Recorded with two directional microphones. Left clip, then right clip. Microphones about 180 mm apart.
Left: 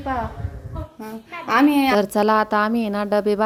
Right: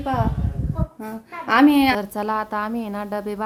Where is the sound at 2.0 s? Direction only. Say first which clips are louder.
Left 7 dB; 35° left (ahead or behind).